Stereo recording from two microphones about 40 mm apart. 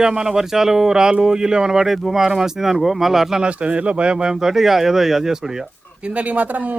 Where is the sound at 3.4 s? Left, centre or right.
Right; by 5.7 s centre.